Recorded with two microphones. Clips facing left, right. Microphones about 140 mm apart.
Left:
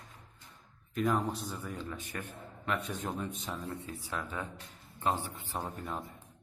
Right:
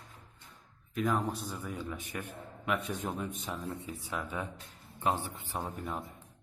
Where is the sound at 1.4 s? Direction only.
10° right (ahead or behind).